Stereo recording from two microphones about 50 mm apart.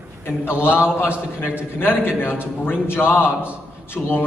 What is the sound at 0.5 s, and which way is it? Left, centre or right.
A man's voice, left.